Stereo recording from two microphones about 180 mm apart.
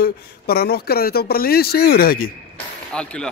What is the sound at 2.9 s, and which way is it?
Speech, 5° left (ahead or behind).